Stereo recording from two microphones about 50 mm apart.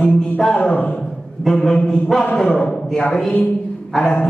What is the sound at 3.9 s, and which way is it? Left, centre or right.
Speech, centre.